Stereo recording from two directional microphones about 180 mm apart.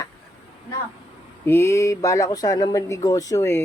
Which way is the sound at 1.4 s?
15° left (ahead or behind).